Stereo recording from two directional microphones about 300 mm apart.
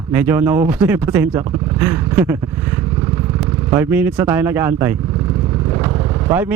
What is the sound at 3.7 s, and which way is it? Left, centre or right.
Speech, centre.